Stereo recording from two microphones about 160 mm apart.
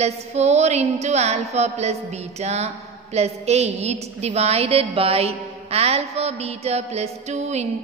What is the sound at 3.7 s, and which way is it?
A woman's voice, 45° right (ahead or behind).